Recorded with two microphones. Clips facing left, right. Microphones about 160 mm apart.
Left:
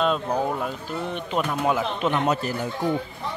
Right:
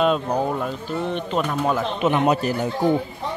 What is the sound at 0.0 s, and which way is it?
Speech, 5° right (ahead or behind).